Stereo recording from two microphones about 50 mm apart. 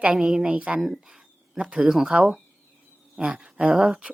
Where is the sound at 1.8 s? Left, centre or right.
Centre.